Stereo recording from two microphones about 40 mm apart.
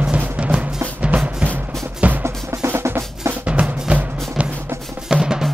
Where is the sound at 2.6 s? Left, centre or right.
Right.